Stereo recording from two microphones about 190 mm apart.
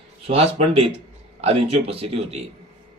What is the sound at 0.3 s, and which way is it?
Speech, 30° right (ahead or behind).